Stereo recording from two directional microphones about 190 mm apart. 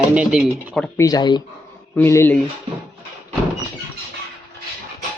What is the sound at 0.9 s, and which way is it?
Speech, 20° left (ahead or behind).